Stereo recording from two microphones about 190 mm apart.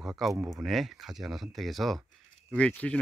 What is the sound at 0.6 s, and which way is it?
Speech, centre (ahead or behind).